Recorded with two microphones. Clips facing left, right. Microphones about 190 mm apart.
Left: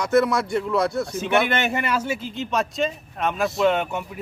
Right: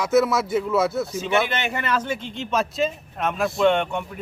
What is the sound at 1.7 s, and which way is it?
Speech, 10° left (ahead or behind).